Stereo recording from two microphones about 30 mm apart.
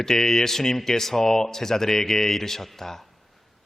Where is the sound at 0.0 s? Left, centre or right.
Centre.